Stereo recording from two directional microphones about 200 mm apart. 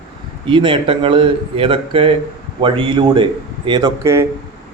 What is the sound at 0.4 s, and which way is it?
A man's voice, 25° right (ahead or behind).